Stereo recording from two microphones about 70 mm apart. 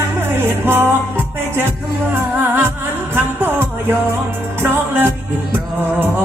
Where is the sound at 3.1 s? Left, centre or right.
Right.